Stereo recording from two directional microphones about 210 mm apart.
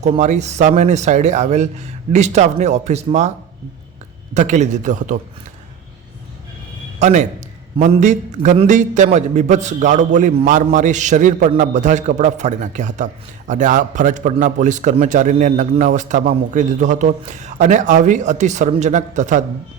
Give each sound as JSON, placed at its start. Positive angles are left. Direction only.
{"t": 0.0, "sound": "a man's voice", "side_deg": -35}
{"t": 4.4, "sound": "a man's voice", "side_deg": -35}
{"t": 7.0, "sound": "a man's voice", "side_deg": -35}